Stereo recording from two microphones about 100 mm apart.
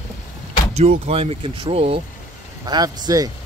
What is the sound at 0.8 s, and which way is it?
Speech, 80° right.